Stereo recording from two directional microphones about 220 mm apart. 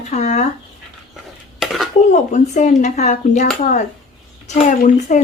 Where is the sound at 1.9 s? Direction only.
30° left (ahead or behind).